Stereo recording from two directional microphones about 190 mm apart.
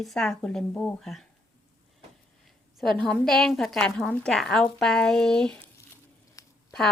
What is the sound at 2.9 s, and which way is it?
A woman's voice, centre (ahead or behind).